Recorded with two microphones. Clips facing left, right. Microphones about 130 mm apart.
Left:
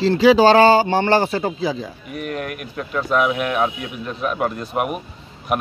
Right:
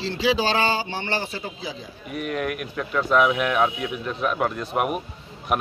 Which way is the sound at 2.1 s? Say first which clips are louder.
Right 1 dB; 45° left (ahead or behind).